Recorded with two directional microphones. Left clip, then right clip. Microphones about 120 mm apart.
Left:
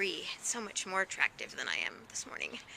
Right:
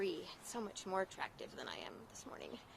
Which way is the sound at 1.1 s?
10° right (ahead or behind).